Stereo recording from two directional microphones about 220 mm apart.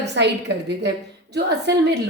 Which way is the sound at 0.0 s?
50° right (ahead or behind).